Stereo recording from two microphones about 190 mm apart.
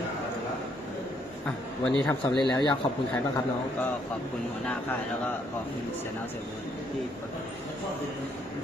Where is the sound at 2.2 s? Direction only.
20° left (ahead or behind).